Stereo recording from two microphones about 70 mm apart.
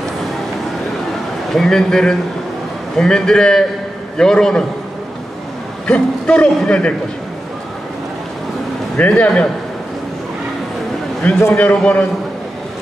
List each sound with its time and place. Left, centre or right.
1.5 s a man's voice: centre
5.9 s a man's voice: centre
8.9 s a man's voice: centre
11.5 s a man's voice: centre